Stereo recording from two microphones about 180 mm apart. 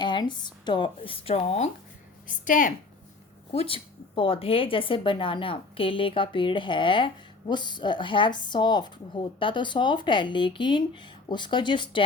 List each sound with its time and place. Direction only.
0.0 s speech: 25° left (ahead or behind)
2.4 s a woman's voice: 45° left (ahead or behind)
3.5 s speech: 30° left (ahead or behind)